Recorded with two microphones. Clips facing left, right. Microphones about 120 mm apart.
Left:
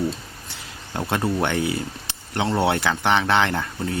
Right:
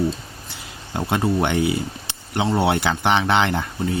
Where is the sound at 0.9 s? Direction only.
10° right (ahead or behind).